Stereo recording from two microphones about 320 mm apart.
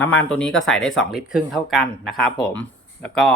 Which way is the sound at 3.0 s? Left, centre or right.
Centre.